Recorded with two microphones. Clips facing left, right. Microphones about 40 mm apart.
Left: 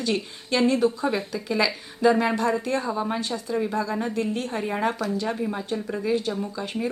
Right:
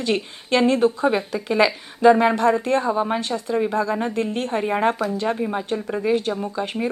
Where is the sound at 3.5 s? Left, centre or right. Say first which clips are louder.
Right 5 dB; right.